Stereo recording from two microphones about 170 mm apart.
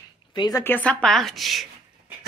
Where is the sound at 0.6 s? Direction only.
10° left (ahead or behind).